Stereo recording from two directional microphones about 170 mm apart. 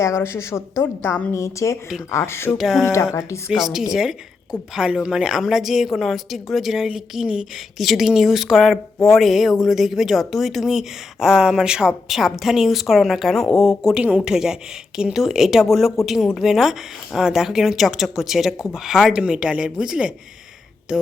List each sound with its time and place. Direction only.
0.0 s a woman's voice: 15° left (ahead or behind)
2.5 s speech: centre (ahead or behind)
2.8 s a woman's voice: 15° left (ahead or behind)
3.5 s speech: centre (ahead or behind)